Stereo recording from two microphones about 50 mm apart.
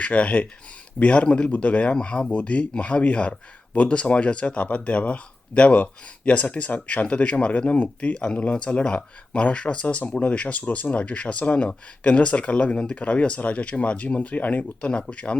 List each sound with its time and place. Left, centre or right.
0.0 s speech: left